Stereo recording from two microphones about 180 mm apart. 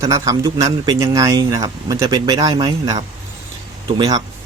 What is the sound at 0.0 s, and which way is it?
Speech, 20° right (ahead or behind).